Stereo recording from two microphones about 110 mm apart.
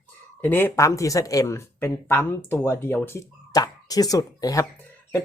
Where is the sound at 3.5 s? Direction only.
35° left (ahead or behind).